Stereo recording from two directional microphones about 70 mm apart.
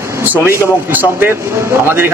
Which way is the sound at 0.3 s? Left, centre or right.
Right.